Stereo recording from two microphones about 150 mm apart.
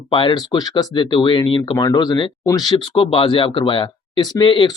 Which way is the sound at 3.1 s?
35° left (ahead or behind).